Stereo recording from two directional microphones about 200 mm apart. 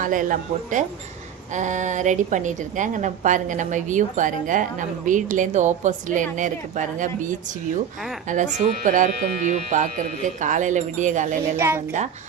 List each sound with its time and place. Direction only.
0.0 s a woman's voice: 40° right (ahead or behind)
11.5 s speech: 10° right (ahead or behind)